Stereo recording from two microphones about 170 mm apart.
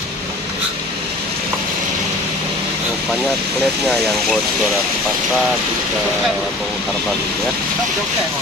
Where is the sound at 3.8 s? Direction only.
Centre (ahead or behind).